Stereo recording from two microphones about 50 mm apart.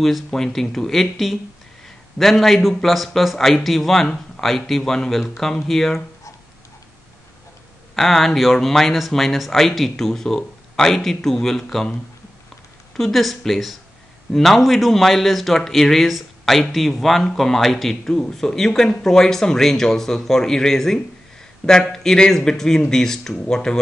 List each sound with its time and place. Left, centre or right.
0.0 s speech: centre
7.9 s speech: centre
12.9 s speech: centre